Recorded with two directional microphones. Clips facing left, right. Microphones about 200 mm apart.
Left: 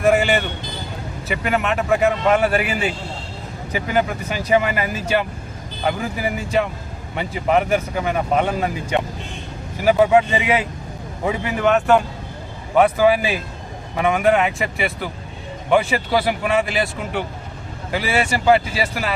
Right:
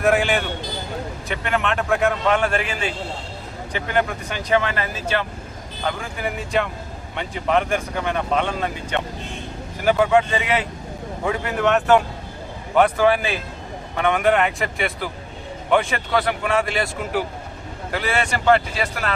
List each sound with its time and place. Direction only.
0.0 s a man's voice: centre (ahead or behind)